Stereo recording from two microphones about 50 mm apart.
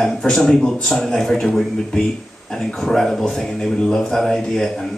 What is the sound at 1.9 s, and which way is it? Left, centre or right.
Speech, centre.